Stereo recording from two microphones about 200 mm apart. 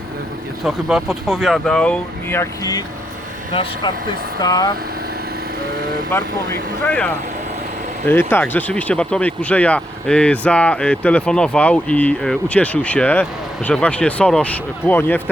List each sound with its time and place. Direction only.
0.6 s speech: centre (ahead or behind); by 2.8 s 15° left (ahead or behind)
3.5 s speech: 25° left (ahead or behind)
6.1 s speech: 10° left (ahead or behind)